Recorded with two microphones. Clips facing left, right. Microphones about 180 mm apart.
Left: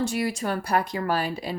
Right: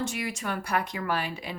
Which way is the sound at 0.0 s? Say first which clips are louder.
Left 6 dB; 35° left (ahead or behind).